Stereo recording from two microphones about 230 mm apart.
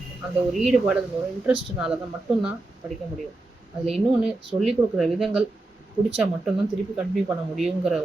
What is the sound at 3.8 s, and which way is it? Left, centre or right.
Speech, centre.